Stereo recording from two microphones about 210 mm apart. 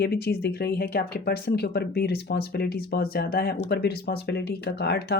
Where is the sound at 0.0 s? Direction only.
50° left (ahead or behind).